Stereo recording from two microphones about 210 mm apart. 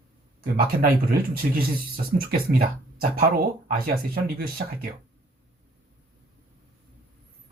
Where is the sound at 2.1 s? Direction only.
45° right (ahead or behind).